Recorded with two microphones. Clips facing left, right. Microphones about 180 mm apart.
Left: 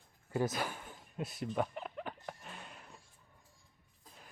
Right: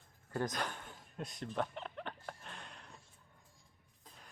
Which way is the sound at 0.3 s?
5° left (ahead or behind).